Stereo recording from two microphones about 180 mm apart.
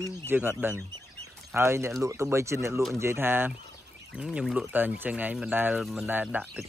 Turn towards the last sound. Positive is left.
turn(degrees=-10)  # may be behind; listen again after turning